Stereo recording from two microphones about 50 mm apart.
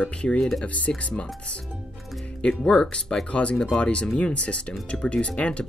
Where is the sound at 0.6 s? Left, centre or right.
Left.